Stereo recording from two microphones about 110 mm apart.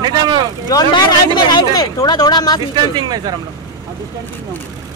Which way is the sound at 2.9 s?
40° right (ahead or behind).